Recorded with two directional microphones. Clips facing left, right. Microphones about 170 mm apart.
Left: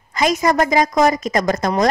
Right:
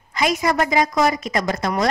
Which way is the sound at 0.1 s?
40° left (ahead or behind).